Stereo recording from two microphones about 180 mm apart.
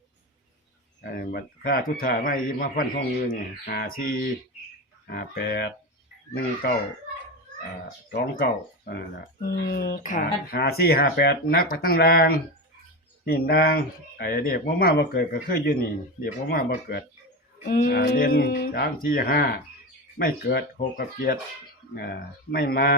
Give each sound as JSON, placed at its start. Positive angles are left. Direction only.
{"t": 1.0, "sound": "a man's voice", "side_deg": 55}
{"t": 8.1, "sound": "speech", "side_deg": 55}
{"t": 18.0, "sound": "speech", "side_deg": 45}